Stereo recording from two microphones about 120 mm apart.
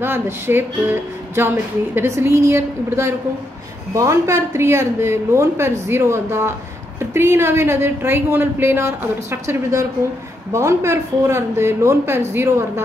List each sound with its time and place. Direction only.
0.0 s a woman's voice: 20° right (ahead or behind)